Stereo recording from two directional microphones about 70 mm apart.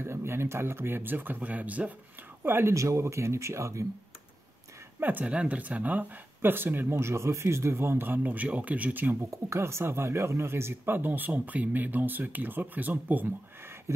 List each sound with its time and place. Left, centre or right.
0.0 s speech: right
2.4 s speech: right
2.7 s speech: right
5.0 s speech: right
9.3 s speech: right